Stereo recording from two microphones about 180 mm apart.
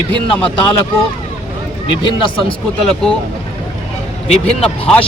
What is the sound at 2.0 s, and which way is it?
Speech, 25° left (ahead or behind).